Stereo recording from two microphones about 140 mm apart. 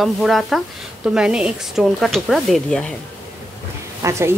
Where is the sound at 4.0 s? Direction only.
20° right (ahead or behind).